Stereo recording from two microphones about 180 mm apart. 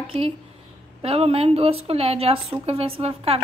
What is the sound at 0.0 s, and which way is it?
A woman's voice, 30° right (ahead or behind).